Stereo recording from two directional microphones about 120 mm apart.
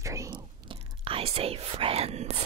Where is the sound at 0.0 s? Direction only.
25° right (ahead or behind).